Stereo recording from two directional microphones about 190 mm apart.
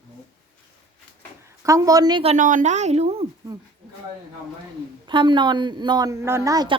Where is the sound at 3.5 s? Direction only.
20° right (ahead or behind).